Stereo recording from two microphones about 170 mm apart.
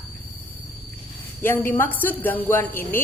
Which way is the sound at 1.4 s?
15° left (ahead or behind).